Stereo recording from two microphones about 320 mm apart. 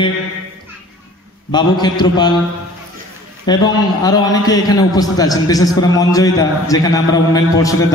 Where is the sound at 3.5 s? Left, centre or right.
Centre.